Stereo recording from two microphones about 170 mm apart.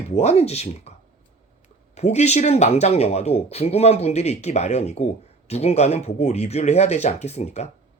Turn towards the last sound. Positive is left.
turn(degrees=40)  # may be behind; listen again after turning